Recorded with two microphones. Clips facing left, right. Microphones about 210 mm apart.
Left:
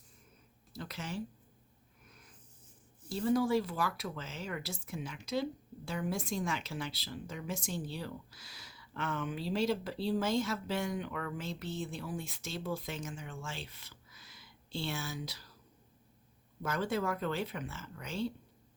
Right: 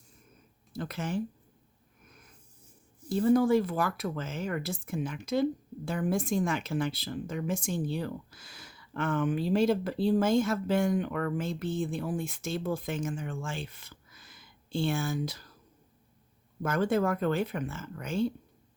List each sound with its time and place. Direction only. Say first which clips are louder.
0.7 s speech: right 8 dB; 50° right (ahead or behind)
3.1 s speech: right 6 dB; 50° right (ahead or behind)
16.6 s speech: right 7 dB; 50° right (ahead or behind)